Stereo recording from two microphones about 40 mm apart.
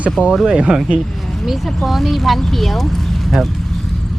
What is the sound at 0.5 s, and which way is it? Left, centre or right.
Speech, right.